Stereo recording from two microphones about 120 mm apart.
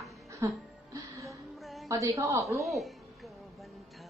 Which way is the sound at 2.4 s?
Centre (ahead or behind).